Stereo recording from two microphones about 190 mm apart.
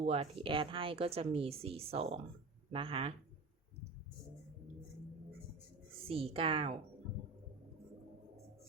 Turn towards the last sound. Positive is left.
turn(degrees=-30)  # may be behind; listen again after turning